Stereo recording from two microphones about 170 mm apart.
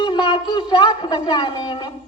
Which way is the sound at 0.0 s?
30° left (ahead or behind).